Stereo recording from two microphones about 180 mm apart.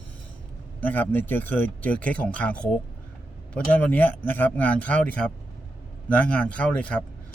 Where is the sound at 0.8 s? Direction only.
10° left (ahead or behind).